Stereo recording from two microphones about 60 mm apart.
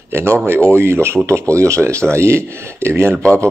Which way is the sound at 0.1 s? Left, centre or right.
Right.